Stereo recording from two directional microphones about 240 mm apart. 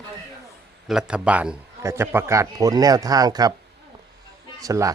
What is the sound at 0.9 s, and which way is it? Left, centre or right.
A man's voice, centre.